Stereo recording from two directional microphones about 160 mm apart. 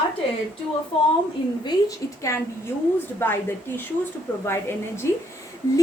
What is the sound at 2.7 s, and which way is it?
A woman's voice, 10° left (ahead or behind).